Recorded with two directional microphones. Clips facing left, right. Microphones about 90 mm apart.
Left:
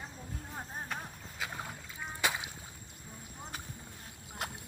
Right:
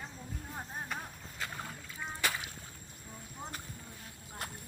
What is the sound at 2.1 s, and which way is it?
Boat, 15° left (ahead or behind).